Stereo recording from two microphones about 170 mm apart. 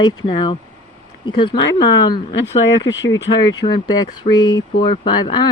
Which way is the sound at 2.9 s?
90° left.